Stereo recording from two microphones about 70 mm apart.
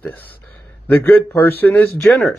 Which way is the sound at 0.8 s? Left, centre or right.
Left.